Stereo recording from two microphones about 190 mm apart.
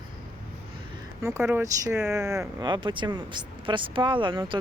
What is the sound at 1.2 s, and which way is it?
Speech, 10° right (ahead or behind).